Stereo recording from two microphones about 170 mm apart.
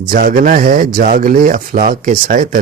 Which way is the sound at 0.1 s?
55° right (ahead or behind).